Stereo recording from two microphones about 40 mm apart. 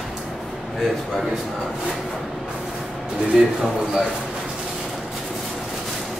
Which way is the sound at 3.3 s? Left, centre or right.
Centre.